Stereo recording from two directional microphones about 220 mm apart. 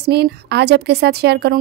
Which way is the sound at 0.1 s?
50° right (ahead or behind).